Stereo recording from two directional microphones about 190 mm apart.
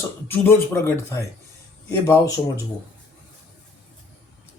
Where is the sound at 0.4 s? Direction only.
10° left (ahead or behind).